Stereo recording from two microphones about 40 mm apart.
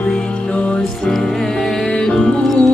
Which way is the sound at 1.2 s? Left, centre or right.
Centre.